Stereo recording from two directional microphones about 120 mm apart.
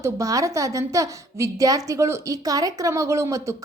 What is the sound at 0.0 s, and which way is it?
A woman's voice, 25° right (ahead or behind).